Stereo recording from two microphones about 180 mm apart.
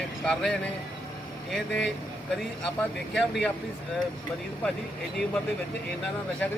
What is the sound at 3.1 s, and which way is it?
Speech, 5° left (ahead or behind).